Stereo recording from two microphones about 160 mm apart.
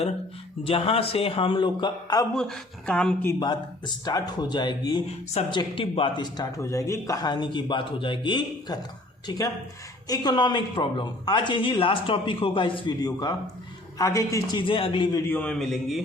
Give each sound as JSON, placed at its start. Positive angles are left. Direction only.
{"t": 0.6, "sound": "a man's voice", "side_deg": 35}
{"t": 2.3, "sound": "speech", "side_deg": 5}
{"t": 3.4, "sound": "speech", "side_deg": 25}
{"t": 10.1, "sound": "speech", "side_deg": 25}
{"t": 15.3, "sound": "speech", "side_deg": 5}